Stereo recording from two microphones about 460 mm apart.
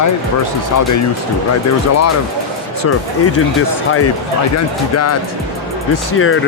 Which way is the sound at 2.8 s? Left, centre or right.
Left.